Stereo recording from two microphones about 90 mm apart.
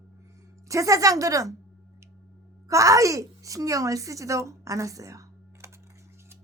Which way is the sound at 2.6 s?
40° right (ahead or behind).